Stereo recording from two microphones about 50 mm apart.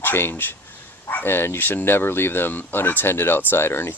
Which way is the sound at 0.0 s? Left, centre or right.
Left.